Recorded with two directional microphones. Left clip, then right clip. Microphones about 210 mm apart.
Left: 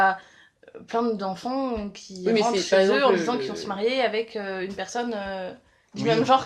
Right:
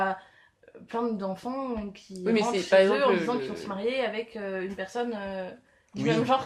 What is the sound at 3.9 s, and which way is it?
Speech, 40° left (ahead or behind).